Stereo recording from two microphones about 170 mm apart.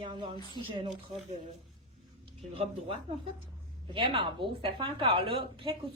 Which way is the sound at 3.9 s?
30° right (ahead or behind).